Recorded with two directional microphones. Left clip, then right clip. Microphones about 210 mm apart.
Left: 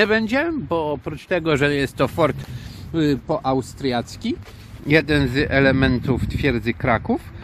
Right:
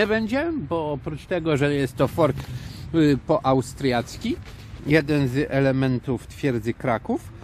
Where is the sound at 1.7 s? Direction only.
20° right (ahead or behind).